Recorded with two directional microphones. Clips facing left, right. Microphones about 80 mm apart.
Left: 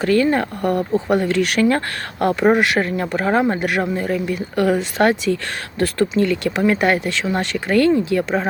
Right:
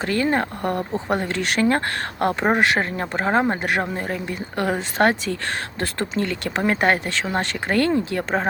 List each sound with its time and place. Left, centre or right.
0.0 s speech: right